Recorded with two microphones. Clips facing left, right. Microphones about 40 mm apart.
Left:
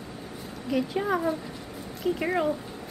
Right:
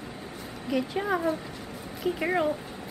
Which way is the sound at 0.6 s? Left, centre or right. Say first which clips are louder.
Left 1 dB; centre.